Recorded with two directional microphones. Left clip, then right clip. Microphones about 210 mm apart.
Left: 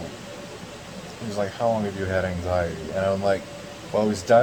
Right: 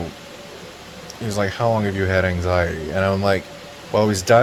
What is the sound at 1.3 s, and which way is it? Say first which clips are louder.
Speech: right 4 dB; 50° right (ahead or behind).